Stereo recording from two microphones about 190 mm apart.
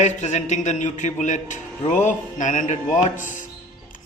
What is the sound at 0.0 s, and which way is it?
A man's voice, 40° left (ahead or behind).